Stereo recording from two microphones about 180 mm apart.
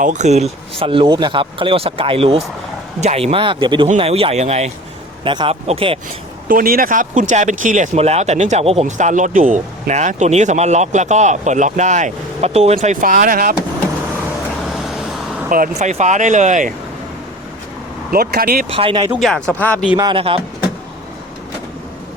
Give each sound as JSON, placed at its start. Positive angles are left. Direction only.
{"t": 0.0, "sound": "speech", "side_deg": -40}
{"t": 5.2, "sound": "speech", "side_deg": -25}
{"t": 6.5, "sound": "speech", "side_deg": -50}
{"t": 14.7, "sound": "vehicle", "side_deg": 0}
{"t": 15.4, "sound": "speech", "side_deg": -50}
{"t": 15.8, "sound": "speech", "side_deg": -40}
{"t": 18.1, "sound": "speech", "side_deg": -55}
{"t": 18.7, "sound": "speech", "side_deg": -30}
{"t": 19.1, "sound": "speech", "side_deg": 0}
{"t": 20.0, "sound": "speech", "side_deg": -25}